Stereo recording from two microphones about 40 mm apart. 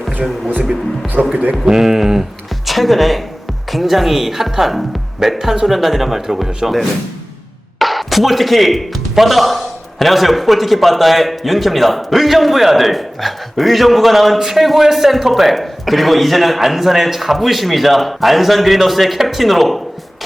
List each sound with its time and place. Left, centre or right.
0.2 s speech: centre
1.2 s speech: right
1.6 s speech: centre